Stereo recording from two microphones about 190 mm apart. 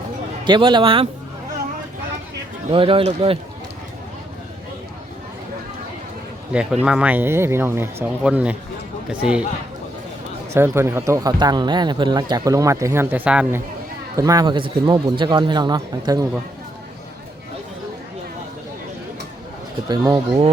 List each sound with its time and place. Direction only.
0.4 s speech: 25° right (ahead or behind)
2.7 s speech: 30° right (ahead or behind)
6.5 s speech: 5° right (ahead or behind)
10.5 s speech: 15° right (ahead or behind)
14.2 s speech: 20° right (ahead or behind)
19.9 s speech: 20° right (ahead or behind)